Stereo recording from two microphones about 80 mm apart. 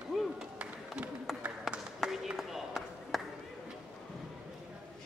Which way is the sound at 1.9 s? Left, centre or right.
Centre.